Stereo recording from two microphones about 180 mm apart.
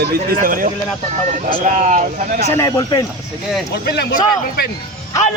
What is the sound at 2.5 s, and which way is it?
Speech, 20° left (ahead or behind).